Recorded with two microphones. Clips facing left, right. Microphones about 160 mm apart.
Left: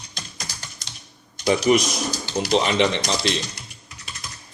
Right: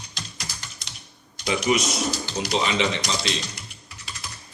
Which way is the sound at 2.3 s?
55° left (ahead or behind).